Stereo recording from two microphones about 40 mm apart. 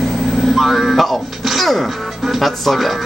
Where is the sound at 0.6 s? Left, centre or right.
Centre.